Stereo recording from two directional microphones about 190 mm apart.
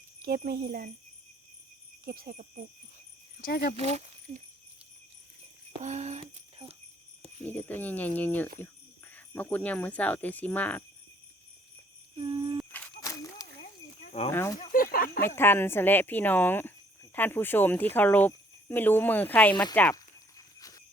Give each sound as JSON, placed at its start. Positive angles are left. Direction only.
{"t": 0.2, "sound": "speech", "side_deg": -50}
{"t": 2.0, "sound": "cricket", "side_deg": -50}
{"t": 3.4, "sound": "speech", "side_deg": 50}
{"t": 3.8, "sound": "speech", "side_deg": -35}
{"t": 5.8, "sound": "a sound", "side_deg": -35}
{"t": 7.4, "sound": "speech", "side_deg": 10}
{"t": 12.7, "sound": "a sound", "side_deg": 15}
{"t": 14.3, "sound": "speech", "side_deg": 15}
{"t": 14.7, "sound": "a sound", "side_deg": 50}
{"t": 15.2, "sound": "speech", "side_deg": 10}
{"t": 20.6, "sound": "clip-clop", "side_deg": 20}